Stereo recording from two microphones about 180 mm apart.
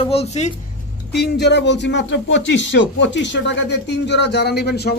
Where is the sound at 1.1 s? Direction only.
65° left (ahead or behind).